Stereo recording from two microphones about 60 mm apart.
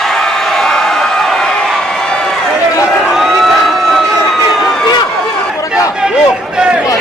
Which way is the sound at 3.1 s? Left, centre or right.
Centre.